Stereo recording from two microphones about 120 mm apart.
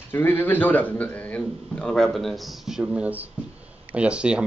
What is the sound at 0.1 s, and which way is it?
Speech, 15° left (ahead or behind).